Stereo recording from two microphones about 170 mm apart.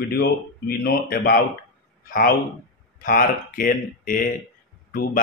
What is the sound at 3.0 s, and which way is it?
Speech, 55° left (ahead or behind).